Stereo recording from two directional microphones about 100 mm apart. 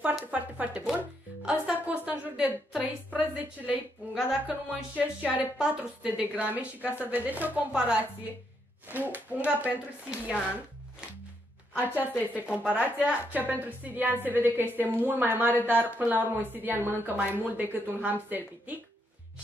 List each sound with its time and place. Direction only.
0.3 s a woman's voice: 15° right (ahead or behind)
1.4 s music: 15° right (ahead or behind)
4.1 s a woman's voice: 5° right (ahead or behind)
11.8 s a woman's voice: 20° right (ahead or behind)